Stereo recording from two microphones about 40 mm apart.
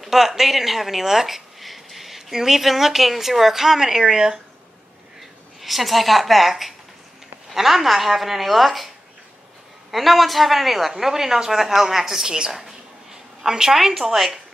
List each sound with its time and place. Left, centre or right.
0.0 s speech: centre
5.6 s a woman's voice: centre
7.5 s a woman's voice: centre